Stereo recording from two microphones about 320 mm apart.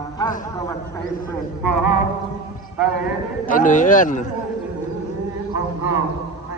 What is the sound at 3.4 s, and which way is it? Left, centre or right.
Speech, left.